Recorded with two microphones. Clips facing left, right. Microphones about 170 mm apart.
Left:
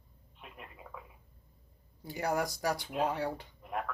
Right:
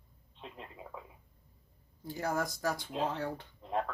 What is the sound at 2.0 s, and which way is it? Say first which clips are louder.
Speech: left 2 dB; 15° left (ahead or behind).